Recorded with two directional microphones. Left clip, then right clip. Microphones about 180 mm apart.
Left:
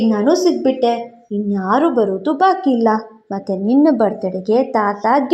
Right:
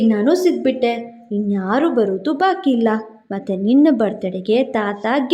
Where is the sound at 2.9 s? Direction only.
25° right (ahead or behind).